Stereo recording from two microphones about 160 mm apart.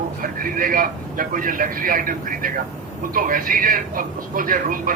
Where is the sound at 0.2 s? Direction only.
60° right (ahead or behind).